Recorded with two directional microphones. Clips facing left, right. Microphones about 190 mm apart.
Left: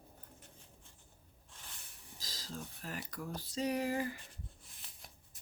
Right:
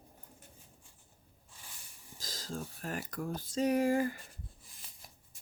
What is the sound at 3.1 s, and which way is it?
Speech, 50° right (ahead or behind).